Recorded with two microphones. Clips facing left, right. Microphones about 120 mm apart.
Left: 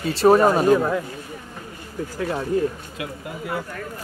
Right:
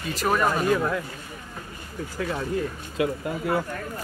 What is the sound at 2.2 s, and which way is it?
Speech, 35° left (ahead or behind).